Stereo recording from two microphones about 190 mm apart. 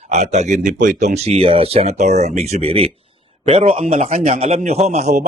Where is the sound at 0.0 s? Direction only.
35° right (ahead or behind).